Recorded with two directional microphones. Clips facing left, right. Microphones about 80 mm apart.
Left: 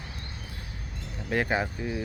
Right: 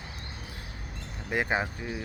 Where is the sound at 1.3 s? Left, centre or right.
Centre.